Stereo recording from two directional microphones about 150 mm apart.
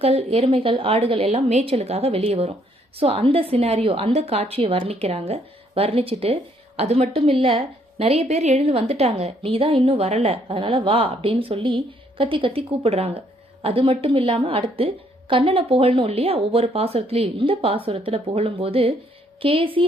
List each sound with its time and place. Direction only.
0.0 s a woman's voice: 45° right (ahead or behind)